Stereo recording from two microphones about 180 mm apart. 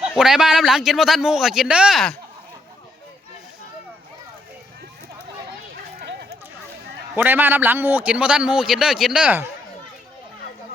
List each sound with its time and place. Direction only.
0.2 s speech: 5° right (ahead or behind)
5.7 s a sound: 65° right (ahead or behind)
7.2 s a man's voice: 10° right (ahead or behind)